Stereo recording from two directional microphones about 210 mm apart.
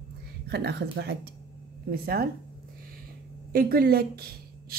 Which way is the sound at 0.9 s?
55° right (ahead or behind).